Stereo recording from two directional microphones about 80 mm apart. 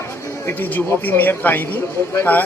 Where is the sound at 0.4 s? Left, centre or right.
Left.